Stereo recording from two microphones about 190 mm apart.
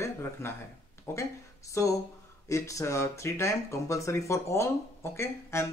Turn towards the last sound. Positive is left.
turn(degrees=15)  # may be behind; listen again after turning